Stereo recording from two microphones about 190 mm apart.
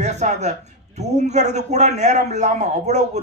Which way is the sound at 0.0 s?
35° right (ahead or behind).